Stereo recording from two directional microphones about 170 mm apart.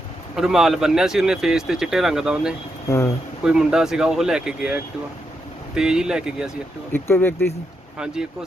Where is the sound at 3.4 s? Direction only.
5° right (ahead or behind).